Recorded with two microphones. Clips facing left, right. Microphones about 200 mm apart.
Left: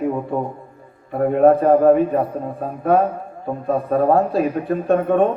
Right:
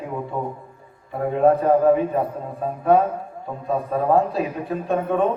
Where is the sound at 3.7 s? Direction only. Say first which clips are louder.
Left 3 dB; 55° left (ahead or behind).